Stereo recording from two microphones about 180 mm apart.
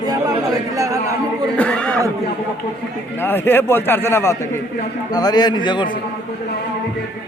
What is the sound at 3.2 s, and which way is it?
A man's voice, 10° left (ahead or behind).